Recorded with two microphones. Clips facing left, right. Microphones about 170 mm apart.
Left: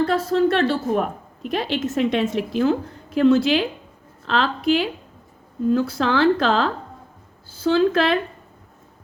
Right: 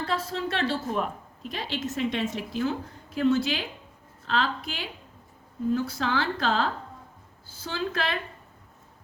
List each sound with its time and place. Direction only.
0.3 s a woman's voice: 60° left (ahead or behind); by 8.2 s 90° left